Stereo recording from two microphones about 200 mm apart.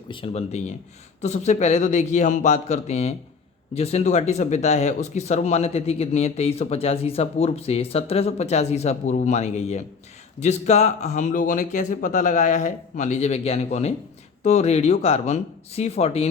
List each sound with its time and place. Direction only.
0.1 s speech: 30° left (ahead or behind)